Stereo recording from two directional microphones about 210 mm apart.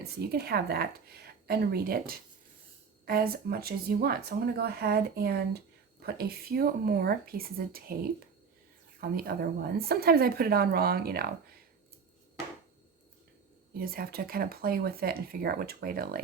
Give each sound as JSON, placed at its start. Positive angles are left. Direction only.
{"t": 0.0, "sound": "speech", "side_deg": -50}
{"t": 9.0, "sound": "speech", "side_deg": -45}
{"t": 13.7, "sound": "speech", "side_deg": -45}